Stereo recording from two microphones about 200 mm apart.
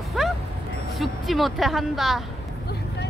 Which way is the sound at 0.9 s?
Centre (ahead or behind).